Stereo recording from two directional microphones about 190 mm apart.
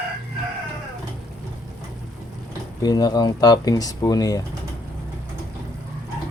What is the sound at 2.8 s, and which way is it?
Speech, 20° left (ahead or behind).